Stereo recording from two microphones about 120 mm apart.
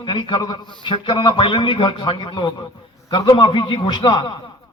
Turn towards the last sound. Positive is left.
turn(degrees=40)  # may be behind; listen again after turning